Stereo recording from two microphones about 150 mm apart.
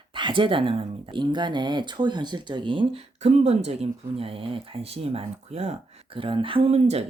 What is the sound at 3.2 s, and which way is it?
Speech, 45° right (ahead or behind).